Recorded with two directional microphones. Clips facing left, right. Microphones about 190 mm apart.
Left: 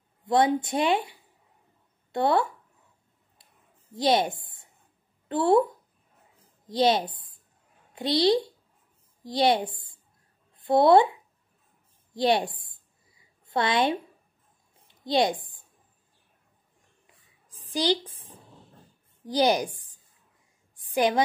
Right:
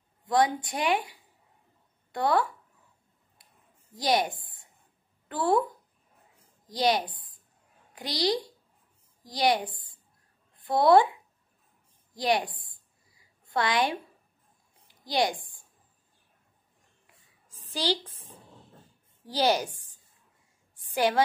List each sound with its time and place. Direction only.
0.2 s a woman's voice: 25° left (ahead or behind)
2.1 s a woman's voice: 25° left (ahead or behind)
3.9 s a woman's voice: 25° left (ahead or behind)
6.7 s a woman's voice: 25° left (ahead or behind)
12.1 s a sound: 25° left (ahead or behind)
14.9 s a woman's voice: 25° left (ahead or behind)
17.7 s a woman's voice: 15° left (ahead or behind)
19.2 s a woman's voice: 15° left (ahead or behind)
20.8 s a sound: 15° left (ahead or behind)